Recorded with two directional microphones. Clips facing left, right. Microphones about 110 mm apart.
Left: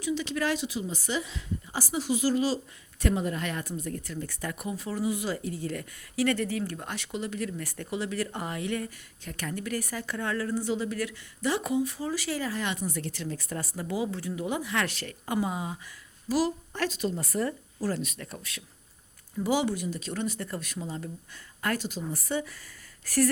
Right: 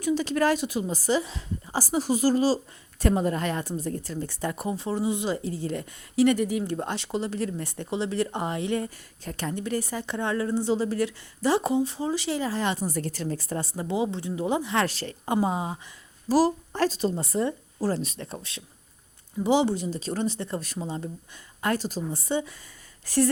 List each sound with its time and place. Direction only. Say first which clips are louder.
0.0 s a woman's voice: right 6 dB; 40° right (ahead or behind); by 6.7 s 15° right (ahead or behind)
6.7 s speech: right 6 dB; 30° right (ahead or behind)
21.8 s a woman's voice: right 4 dB; 40° right (ahead or behind)
22.1 s speech: right 2 dB; 25° right (ahead or behind)